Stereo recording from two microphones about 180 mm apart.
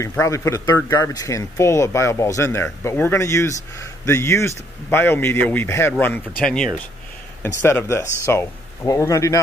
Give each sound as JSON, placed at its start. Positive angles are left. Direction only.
{"t": 0.2, "sound": "speech", "side_deg": 15}